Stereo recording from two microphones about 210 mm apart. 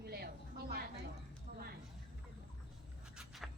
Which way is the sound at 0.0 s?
50° right (ahead or behind).